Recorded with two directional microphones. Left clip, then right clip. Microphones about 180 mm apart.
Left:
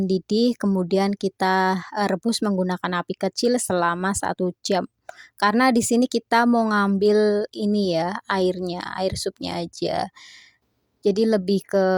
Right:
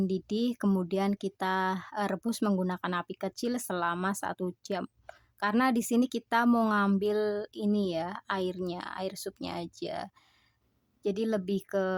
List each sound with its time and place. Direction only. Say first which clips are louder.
0.1 s speech: left 11 dB; 30° left (ahead or behind)